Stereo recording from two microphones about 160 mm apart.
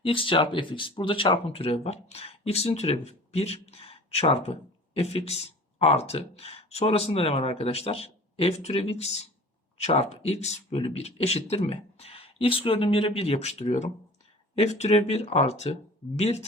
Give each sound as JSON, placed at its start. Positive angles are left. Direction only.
{"t": 0.0, "sound": "speech", "side_deg": 35}